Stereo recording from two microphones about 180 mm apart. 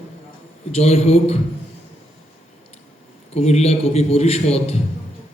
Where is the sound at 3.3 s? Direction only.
35° left (ahead or behind).